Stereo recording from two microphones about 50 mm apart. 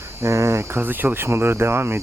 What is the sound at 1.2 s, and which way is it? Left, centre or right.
Speech, right.